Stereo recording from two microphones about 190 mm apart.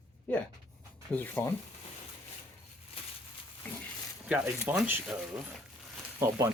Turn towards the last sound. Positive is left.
turn(degrees=-15)  # may be behind; listen again after turning